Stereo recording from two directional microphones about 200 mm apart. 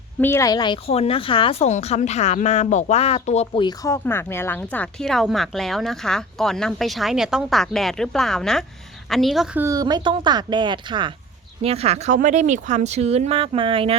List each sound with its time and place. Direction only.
0.2 s a woman's voice: 15° left (ahead or behind); by 13.9 s 25° right (ahead or behind)